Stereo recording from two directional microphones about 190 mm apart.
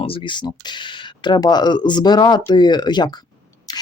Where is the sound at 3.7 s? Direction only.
20° left (ahead or behind).